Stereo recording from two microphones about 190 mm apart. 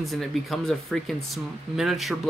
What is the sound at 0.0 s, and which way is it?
Speech, centre (ahead or behind).